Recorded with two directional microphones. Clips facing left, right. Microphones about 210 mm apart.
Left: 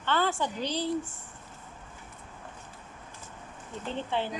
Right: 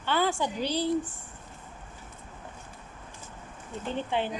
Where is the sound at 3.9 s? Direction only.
15° right (ahead or behind).